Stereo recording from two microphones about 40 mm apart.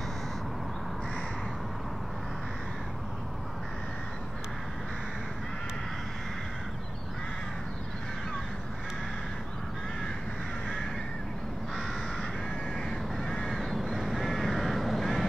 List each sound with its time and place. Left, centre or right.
12.9 s crow: centre